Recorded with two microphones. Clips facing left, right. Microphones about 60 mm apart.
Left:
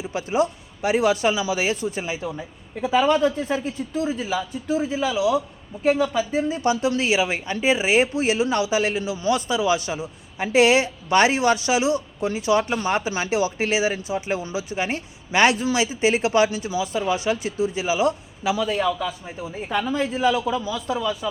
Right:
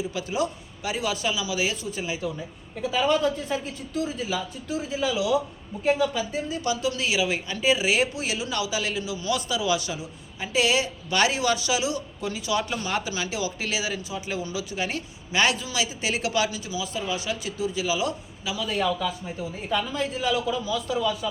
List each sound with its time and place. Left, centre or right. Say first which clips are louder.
0.0 s speech: left 5 dB; left
0.8 s a man's voice: left 8 dB; left
2.8 s a man's voice: left 4 dB; left
3.2 s a man's voice: left 4 dB; centre
6.5 s speech: left 5 dB; left
10.3 s a man's voice: left 7 dB; left
18.6 s a man's voice: left 1 dB; left
18.9 s a man's voice: left 2 dB; centre